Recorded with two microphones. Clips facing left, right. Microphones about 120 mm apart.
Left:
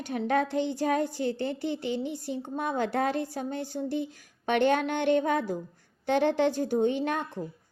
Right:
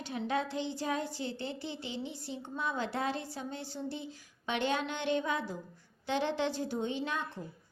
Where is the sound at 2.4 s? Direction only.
50° left (ahead or behind).